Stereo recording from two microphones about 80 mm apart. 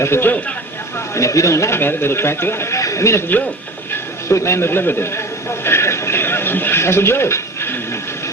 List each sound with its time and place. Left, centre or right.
0.0 s speech: left
1.1 s a man's voice: left
5.6 s television: left